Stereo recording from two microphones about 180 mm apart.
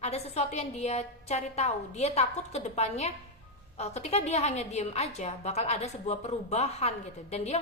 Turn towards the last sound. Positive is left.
turn(degrees=35)  # may be behind; listen again after turning